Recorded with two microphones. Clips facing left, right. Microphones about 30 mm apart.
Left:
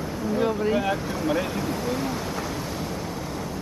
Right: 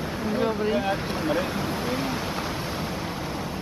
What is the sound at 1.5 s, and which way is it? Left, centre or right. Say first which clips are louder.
Speech: even; right.